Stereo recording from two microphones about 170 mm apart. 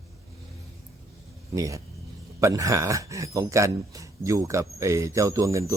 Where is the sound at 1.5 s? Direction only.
20° right (ahead or behind).